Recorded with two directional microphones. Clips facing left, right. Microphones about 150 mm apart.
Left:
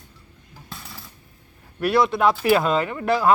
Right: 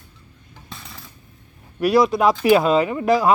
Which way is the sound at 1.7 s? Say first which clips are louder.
Right 3 dB; 15° right (ahead or behind).